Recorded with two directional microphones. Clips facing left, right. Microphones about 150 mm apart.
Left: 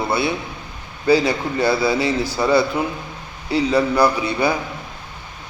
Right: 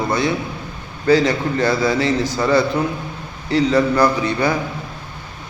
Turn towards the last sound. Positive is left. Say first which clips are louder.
# right 1 dB
turn(degrees=10)  # may be behind; listen again after turning